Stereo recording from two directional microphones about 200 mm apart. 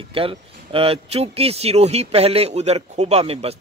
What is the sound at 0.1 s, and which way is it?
Speech, 25° right (ahead or behind).